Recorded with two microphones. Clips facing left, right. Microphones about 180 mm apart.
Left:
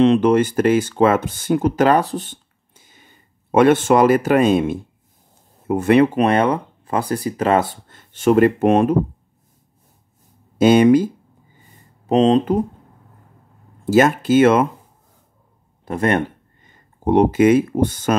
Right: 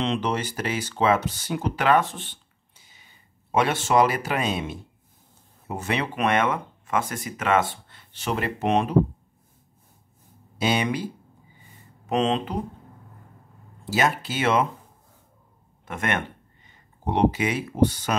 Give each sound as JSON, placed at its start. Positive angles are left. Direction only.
{"t": 0.0, "sound": "speech", "side_deg": 55}
{"t": 6.1, "sound": "speech", "side_deg": 35}
{"t": 10.6, "sound": "speech", "side_deg": 45}
{"t": 12.1, "sound": "speech", "side_deg": 35}
{"t": 13.8, "sound": "speech", "side_deg": 50}
{"t": 15.8, "sound": "speech", "side_deg": 35}
{"t": 16.6, "sound": "speech", "side_deg": 50}